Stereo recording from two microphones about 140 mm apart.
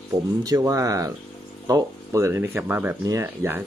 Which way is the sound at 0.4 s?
25° right (ahead or behind).